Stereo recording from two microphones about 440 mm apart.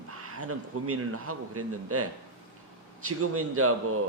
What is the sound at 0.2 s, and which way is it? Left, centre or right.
A man's voice, right.